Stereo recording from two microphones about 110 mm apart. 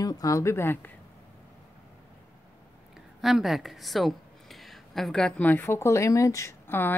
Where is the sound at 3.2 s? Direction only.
Centre (ahead or behind).